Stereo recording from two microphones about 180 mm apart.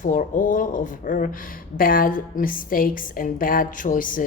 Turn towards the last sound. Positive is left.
turn(degrees=50)  # may be behind; listen again after turning